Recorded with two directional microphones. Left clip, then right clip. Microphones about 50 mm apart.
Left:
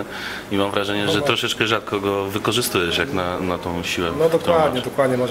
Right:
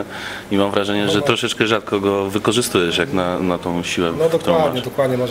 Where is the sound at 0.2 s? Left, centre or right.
Centre.